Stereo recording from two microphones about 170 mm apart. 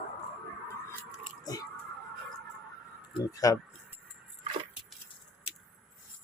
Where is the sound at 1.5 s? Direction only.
20° left (ahead or behind).